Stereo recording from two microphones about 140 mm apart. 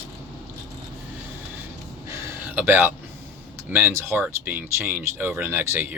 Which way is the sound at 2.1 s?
15° right (ahead or behind).